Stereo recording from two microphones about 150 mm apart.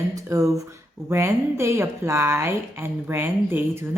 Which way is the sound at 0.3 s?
20° right (ahead or behind).